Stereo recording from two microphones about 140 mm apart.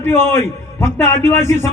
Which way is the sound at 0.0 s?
15° left (ahead or behind).